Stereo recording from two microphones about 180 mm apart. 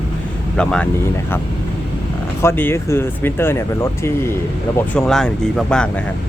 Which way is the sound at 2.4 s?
15° left (ahead or behind).